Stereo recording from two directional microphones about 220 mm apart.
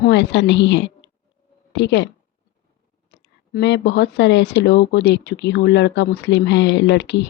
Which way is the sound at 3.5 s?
50° left (ahead or behind).